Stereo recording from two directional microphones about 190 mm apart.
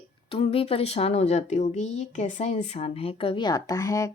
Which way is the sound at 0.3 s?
30° left (ahead or behind).